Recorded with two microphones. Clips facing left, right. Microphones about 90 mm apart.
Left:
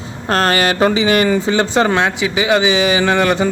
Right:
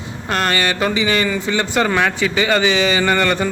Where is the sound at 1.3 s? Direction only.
30° left (ahead or behind).